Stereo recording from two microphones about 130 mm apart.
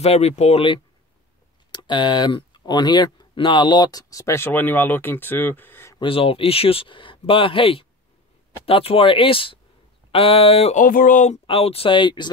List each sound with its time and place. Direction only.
0.0 s speech: 55° left (ahead or behind)
1.7 s speech: 35° left (ahead or behind); by 5.9 s 15° left (ahead or behind)
5.9 s speech: 45° left (ahead or behind)
10.8 s speech: 90° left
11.4 s speech: 50° left (ahead or behind)